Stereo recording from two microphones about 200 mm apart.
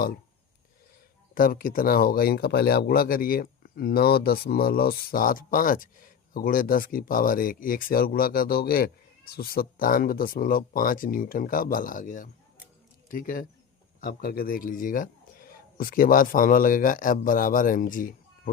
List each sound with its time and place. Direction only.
1.4 s speech: 45° left (ahead or behind)